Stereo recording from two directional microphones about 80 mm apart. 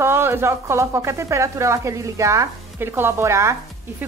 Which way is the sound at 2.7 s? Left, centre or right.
Right.